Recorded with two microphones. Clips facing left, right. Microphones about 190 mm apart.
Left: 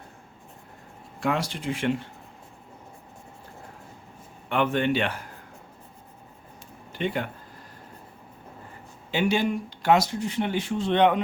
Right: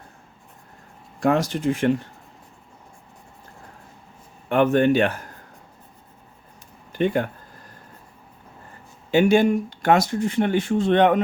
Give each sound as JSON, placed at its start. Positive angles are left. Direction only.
{"t": 1.2, "sound": "speech", "side_deg": -45}
{"t": 4.4, "sound": "speech", "side_deg": -45}
{"t": 6.9, "sound": "speech", "side_deg": -45}
{"t": 9.1, "sound": "speech", "side_deg": -50}